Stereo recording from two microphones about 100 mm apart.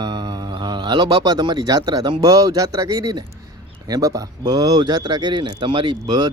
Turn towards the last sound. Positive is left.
turn(degrees=-45)  # may be behind; listen again after turning